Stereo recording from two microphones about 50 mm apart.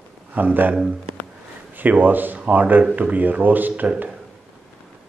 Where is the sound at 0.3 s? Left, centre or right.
Right.